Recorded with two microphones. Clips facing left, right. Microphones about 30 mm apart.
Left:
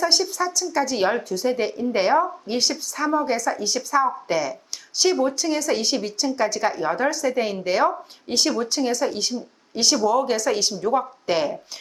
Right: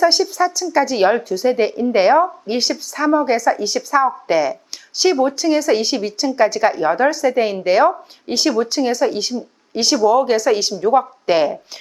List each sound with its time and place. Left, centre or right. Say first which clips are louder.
0.0 s speech: right 6 dB; centre
11.3 s speech: right 7 dB; right